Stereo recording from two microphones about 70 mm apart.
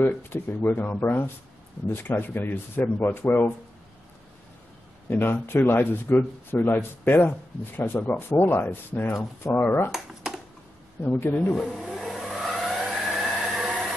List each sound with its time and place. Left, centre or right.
0.0 s speech: left
5.1 s speech: left
9.8 s speech: centre
11.0 s speech: left
11.3 s speech: centre
11.6 s vehicle: centre